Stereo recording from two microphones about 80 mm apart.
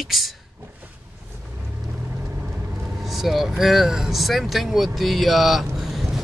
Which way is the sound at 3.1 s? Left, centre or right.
Centre.